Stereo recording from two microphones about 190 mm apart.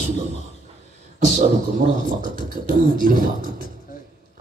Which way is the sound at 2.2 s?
45° right (ahead or behind).